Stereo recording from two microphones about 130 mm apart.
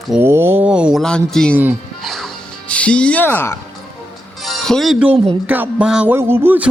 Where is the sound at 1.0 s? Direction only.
5° left (ahead or behind).